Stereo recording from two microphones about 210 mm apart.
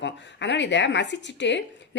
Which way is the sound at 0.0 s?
55° left (ahead or behind).